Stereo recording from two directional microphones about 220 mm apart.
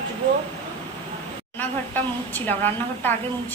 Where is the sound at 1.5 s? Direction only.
10° left (ahead or behind).